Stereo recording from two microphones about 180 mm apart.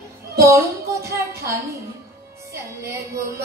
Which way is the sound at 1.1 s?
15° right (ahead or behind).